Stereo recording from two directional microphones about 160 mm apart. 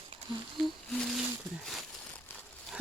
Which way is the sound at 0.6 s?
5° left (ahead or behind).